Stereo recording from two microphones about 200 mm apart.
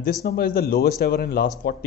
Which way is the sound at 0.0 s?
45° left (ahead or behind).